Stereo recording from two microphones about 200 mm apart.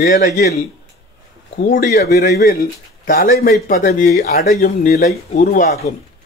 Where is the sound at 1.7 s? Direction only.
50° left (ahead or behind).